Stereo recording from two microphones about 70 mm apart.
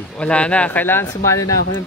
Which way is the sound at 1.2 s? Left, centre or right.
Left.